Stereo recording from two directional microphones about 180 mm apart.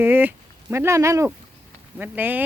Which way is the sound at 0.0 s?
10° right (ahead or behind).